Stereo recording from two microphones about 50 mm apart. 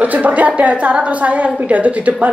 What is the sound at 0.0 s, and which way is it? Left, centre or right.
A woman's voice, right.